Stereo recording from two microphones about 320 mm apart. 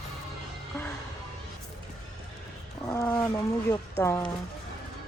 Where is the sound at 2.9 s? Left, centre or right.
Centre.